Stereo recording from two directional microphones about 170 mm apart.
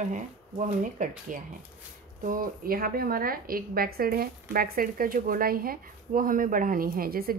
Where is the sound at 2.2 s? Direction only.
55° right (ahead or behind).